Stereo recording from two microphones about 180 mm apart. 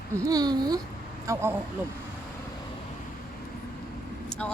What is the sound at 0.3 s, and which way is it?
Speech, 20° right (ahead or behind).